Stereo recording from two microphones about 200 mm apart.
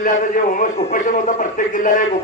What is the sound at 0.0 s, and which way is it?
A man's voice, 40° left (ahead or behind).